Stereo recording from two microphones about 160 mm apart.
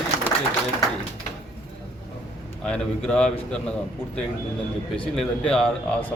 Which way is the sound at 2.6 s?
5° left (ahead or behind).